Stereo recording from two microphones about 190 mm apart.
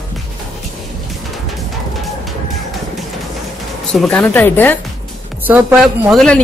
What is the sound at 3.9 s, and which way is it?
Speech, 5° left (ahead or behind).